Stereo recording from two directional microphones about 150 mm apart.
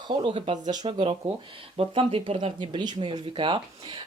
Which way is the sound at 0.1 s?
35° right (ahead or behind).